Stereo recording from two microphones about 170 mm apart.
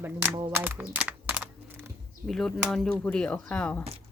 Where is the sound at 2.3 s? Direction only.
5° left (ahead or behind).